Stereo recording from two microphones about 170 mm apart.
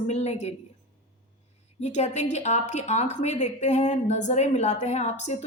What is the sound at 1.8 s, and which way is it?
A woman's voice, 40° left (ahead or behind).